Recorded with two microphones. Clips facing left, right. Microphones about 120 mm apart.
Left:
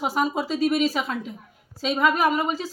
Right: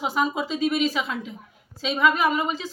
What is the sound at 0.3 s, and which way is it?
Speech, 40° left (ahead or behind).